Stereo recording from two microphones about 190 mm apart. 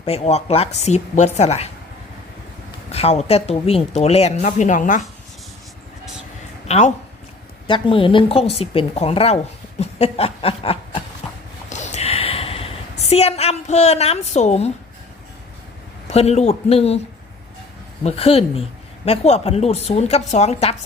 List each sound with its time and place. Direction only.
0.0 s speech: 35° left (ahead or behind)
2.9 s speech: 35° left (ahead or behind)
6.7 s speech: 35° left (ahead or behind)
11.7 s a sound: 35° left (ahead or behind)
16.0 s speech: 35° left (ahead or behind)
18.0 s speech: 30° left (ahead or behind)